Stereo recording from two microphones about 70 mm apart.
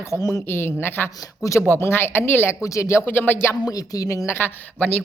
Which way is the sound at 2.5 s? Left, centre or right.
Left.